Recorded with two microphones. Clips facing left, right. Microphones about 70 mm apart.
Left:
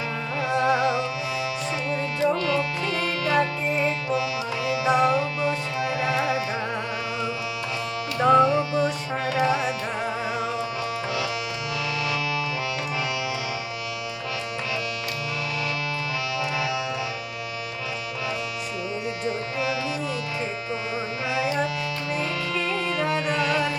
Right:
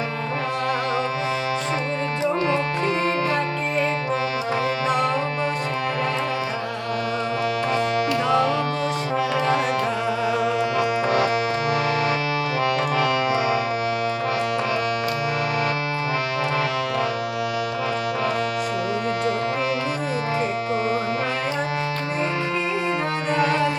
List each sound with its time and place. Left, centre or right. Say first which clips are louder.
3.8 s music: right 2 dB; right
8.3 s music: left 7 dB; right
23.3 s music: right 7 dB; right